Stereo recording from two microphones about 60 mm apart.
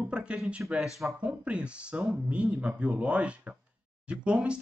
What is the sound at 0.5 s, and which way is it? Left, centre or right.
Speech, centre.